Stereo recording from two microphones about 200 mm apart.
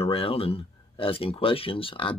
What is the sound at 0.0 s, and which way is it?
Speech, 30° left (ahead or behind).